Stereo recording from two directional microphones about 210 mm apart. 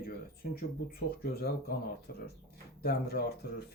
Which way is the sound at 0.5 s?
45° left (ahead or behind).